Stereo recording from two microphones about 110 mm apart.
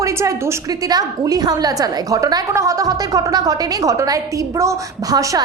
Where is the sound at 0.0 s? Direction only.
25° right (ahead or behind).